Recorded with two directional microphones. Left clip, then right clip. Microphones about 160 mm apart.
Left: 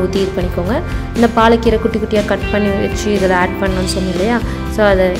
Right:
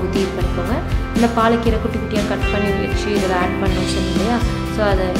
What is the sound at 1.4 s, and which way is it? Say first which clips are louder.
Speech: left 6 dB; 35° left (ahead or behind).